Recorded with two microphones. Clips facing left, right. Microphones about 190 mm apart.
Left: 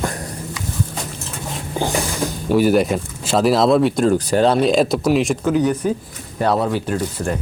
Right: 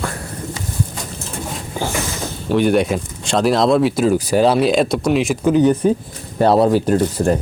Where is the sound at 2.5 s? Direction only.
5° left (ahead or behind).